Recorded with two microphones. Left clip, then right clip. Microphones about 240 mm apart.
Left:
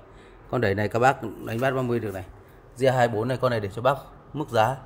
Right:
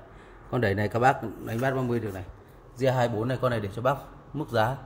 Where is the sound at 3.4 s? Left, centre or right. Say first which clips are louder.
Left 3 dB; left.